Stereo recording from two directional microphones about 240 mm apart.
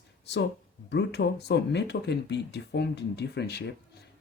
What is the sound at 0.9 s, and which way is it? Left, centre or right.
Speech, left.